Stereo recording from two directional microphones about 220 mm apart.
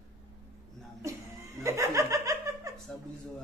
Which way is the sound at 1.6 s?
15° right (ahead or behind).